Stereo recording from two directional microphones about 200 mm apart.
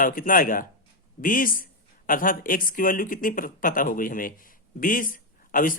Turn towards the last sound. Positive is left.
turn(degrees=45)  # may be behind; listen again after turning